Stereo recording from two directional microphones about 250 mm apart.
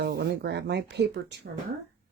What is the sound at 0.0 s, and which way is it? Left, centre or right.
Speech, right.